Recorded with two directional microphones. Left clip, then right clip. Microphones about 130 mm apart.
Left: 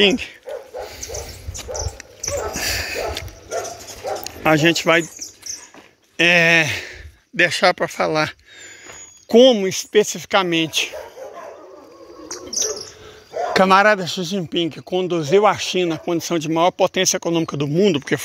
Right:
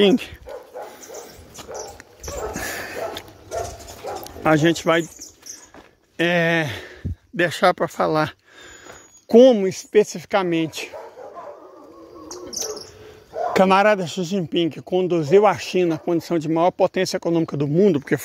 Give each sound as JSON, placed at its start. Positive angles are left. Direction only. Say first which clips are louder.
{"t": 2.5, "sound": "a sound", "louder": "left 5 dB", "side_deg": -20}
{"t": 4.2, "sound": "speech", "louder": "left 2 dB", "side_deg": -15}
{"t": 6.1, "sound": "speech", "louder": "left 6 dB", "side_deg": -20}
{"t": 6.9, "sound": "a sound", "louder": "left 1 dB", "side_deg": -35}
{"t": 7.9, "sound": "speech", "louder": "left 1 dB", "side_deg": -30}
{"t": 13.5, "sound": "speech", "louder": "left 2 dB", "side_deg": -25}
{"t": 16.2, "sound": "speech", "louder": "left 3 dB", "side_deg": -15}